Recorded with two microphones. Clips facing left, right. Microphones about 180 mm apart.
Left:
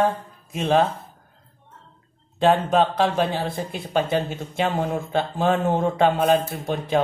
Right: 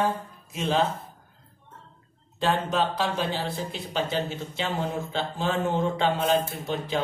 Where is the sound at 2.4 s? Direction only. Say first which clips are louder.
Left 7 dB; 55° left (ahead or behind).